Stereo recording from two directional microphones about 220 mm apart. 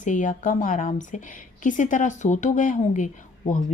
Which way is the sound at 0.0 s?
35° left (ahead or behind).